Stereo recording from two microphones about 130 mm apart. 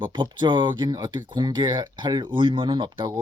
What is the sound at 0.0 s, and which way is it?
Speech, 35° right (ahead or behind).